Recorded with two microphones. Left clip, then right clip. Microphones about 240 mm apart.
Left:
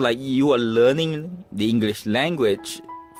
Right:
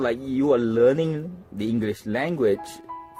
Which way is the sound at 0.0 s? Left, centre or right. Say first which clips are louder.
Left 3 dB; left.